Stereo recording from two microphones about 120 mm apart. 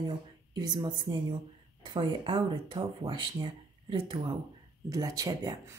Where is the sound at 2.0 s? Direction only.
45° right (ahead or behind).